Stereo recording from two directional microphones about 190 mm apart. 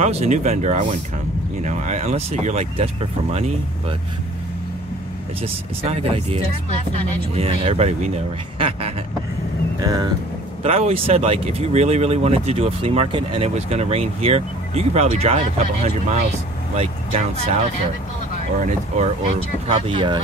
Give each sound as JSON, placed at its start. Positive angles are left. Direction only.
{"t": 0.0, "sound": "speech", "side_deg": -35}
{"t": 5.9, "sound": "speech", "side_deg": -35}
{"t": 9.8, "sound": "vehicle", "side_deg": -20}
{"t": 10.6, "sound": "speech", "side_deg": -35}
{"t": 18.7, "sound": "speech", "side_deg": -40}